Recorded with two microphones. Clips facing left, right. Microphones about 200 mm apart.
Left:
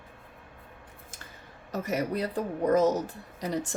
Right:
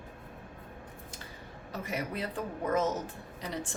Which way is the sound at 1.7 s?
40° left (ahead or behind).